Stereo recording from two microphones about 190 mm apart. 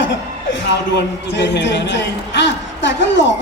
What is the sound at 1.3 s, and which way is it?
Speech, 65° left (ahead or behind).